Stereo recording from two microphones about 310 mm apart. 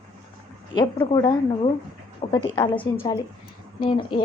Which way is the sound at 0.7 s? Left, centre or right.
Centre.